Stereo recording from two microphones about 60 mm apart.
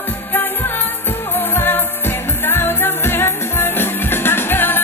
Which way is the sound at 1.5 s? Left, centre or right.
Left.